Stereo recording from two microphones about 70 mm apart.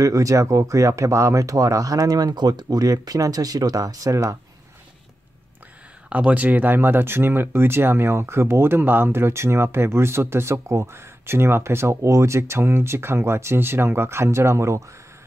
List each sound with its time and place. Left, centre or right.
0.0 s speech: right
6.0 s speech: centre; by 14.8 s right